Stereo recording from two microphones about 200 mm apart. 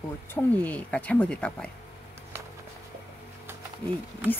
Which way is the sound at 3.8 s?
10° left (ahead or behind).